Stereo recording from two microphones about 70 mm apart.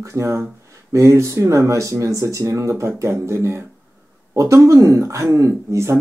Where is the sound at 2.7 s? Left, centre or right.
Right.